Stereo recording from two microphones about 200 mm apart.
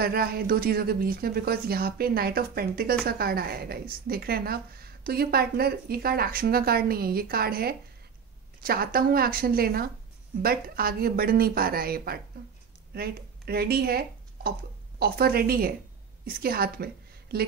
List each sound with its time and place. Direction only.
0.0 s a woman's voice: 50° right (ahead or behind)